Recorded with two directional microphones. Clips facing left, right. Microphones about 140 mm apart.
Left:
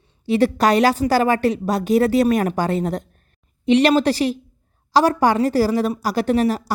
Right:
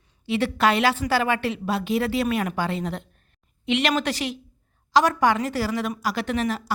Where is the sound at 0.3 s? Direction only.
40° left (ahead or behind).